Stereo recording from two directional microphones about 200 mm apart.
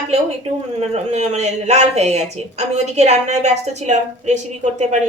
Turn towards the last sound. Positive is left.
turn(degrees=-35)  # may be behind; listen again after turning